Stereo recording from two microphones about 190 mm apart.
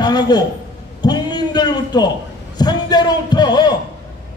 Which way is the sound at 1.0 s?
20° left (ahead or behind).